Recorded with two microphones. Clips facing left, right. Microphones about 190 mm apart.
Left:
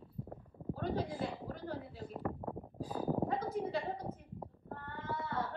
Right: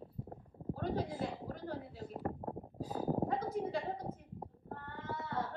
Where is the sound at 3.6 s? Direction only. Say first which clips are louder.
Even; 70° left (ahead or behind).